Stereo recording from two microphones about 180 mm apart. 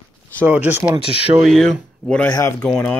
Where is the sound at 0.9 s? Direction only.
30° right (ahead or behind).